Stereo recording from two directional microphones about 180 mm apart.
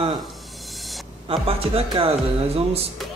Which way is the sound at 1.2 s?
30° right (ahead or behind).